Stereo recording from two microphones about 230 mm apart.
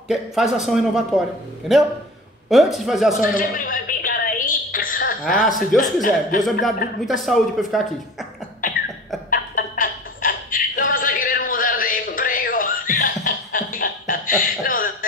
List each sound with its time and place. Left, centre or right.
0.1 s speech: centre
3.2 s a sound: left
5.4 s speech: centre
5.8 s speech: left
7.1 s speech: centre
8.6 s beatboxing: left
9.3 s a sound: left